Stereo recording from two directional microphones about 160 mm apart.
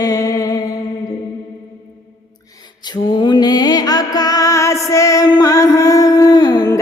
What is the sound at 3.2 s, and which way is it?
Music, 25° left (ahead or behind).